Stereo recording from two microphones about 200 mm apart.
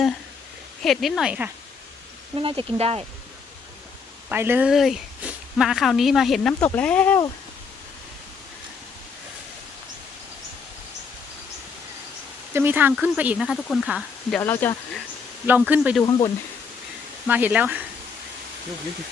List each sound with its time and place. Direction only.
0.8 s speech: centre (ahead or behind)
2.3 s speech: 25° right (ahead or behind)
4.3 s speech: 10° right (ahead or behind); by 7.2 s 5° left (ahead or behind)
12.5 s speech: 10° right (ahead or behind)
14.3 s speech: 10° left (ahead or behind)
15.4 s speech: 10° right (ahead or behind)
16.0 s speech: 20° left (ahead or behind)
17.2 s speech: 10° right (ahead or behind)